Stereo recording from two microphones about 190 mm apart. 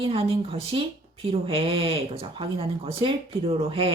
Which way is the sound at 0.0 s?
30° right (ahead or behind).